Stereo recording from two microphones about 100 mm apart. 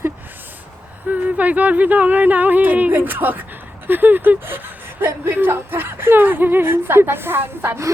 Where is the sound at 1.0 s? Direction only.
15° right (ahead or behind).